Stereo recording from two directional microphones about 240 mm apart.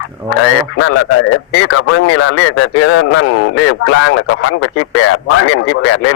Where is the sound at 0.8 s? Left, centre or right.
Left.